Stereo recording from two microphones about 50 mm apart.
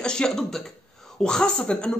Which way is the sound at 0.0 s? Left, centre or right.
Centre.